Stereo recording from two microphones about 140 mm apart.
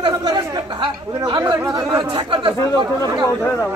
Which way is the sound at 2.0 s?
35° right (ahead or behind).